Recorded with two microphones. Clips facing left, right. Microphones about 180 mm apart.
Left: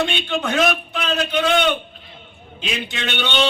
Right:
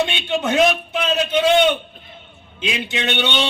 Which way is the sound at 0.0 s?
20° right (ahead or behind).